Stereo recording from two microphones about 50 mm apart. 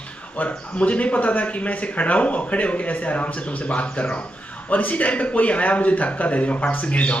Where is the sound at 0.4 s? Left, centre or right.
Left.